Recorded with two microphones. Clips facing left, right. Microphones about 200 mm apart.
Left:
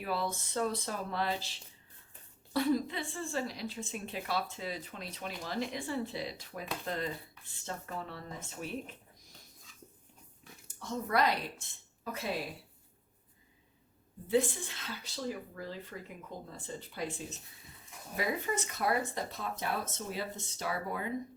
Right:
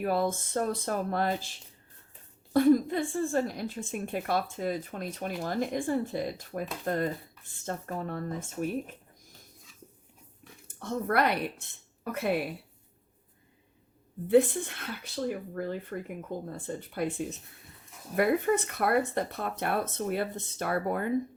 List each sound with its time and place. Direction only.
0.0 s a woman's voice: 50° right (ahead or behind)
10.7 s speech: 55° right (ahead or behind)
14.3 s speech: 55° right (ahead or behind)